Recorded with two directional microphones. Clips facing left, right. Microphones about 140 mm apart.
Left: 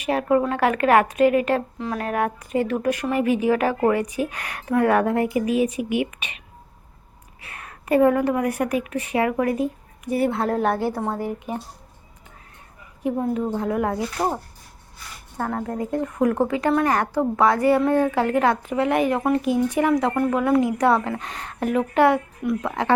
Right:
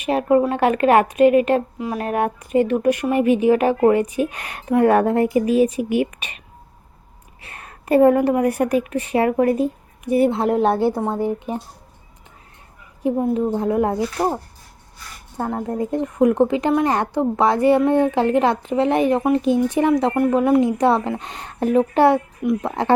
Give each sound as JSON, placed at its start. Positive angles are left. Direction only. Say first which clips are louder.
{"t": 0.0, "sound": "a woman's voice", "louder": "right 3 dB", "side_deg": -25}
{"t": 7.4, "sound": "a woman's voice", "louder": "right 3 dB", "side_deg": -30}
{"t": 13.0, "sound": "a woman's voice", "louder": "right 4 dB", "side_deg": -25}
{"t": 15.4, "sound": "a woman's voice", "louder": "right 3 dB", "side_deg": -20}